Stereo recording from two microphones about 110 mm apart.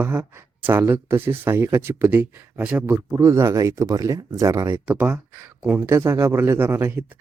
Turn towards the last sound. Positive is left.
turn(degrees=-25)  # may be behind; listen again after turning